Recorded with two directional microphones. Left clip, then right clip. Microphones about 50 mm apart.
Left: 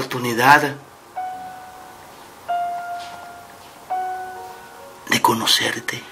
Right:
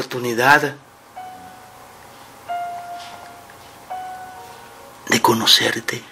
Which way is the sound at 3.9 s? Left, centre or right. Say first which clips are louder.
Left 6 dB; left.